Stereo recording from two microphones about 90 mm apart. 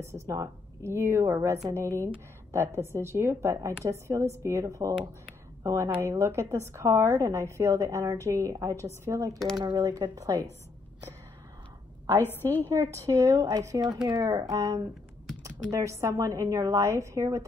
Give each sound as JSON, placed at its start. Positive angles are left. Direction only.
{"t": 0.0, "sound": "a woman's voice", "side_deg": -35}
{"t": 12.6, "sound": "a woman's voice", "side_deg": -35}